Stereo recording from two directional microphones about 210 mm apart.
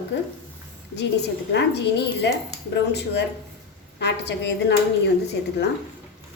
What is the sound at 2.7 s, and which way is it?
A woman's voice, 55° left (ahead or behind).